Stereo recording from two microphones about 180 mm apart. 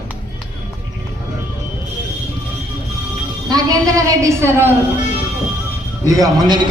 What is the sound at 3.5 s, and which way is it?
A woman's voice, 20° right (ahead or behind).